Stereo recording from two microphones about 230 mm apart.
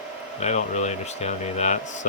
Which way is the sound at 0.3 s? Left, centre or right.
Left.